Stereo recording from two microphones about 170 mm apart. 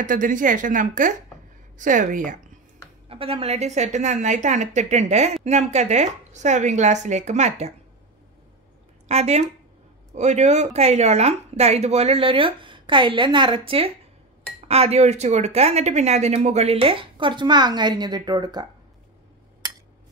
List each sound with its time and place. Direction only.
0.0 s a woman's voice: 50° right (ahead or behind)
3.1 s a woman's voice: 35° right (ahead or behind)
9.0 s speech: 40° right (ahead or behind); by 18.7 s 25° right (ahead or behind)